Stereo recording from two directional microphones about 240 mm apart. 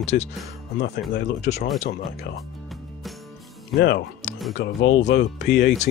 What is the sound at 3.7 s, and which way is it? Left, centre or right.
Speech, left.